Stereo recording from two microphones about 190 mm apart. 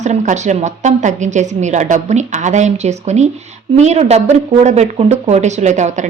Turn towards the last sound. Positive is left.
turn(degrees=-40)  # may be behind; listen again after turning